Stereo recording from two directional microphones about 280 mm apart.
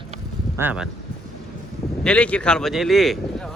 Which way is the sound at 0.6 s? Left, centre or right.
Centre.